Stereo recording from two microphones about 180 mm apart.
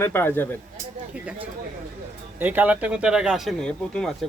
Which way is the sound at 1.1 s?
5° right (ahead or behind).